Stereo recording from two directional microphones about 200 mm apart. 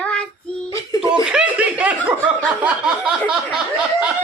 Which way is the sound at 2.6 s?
5° right (ahead or behind).